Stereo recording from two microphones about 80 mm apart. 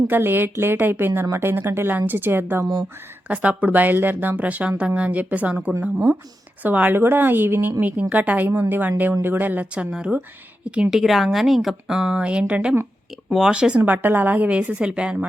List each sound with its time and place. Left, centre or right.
0.1 s a woman's voice: right
9.8 s speech: centre